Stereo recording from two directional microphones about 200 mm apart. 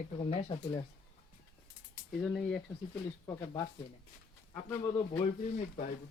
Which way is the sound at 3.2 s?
15° left (ahead or behind).